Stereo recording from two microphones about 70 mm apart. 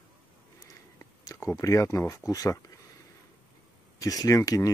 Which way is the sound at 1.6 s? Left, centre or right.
Left.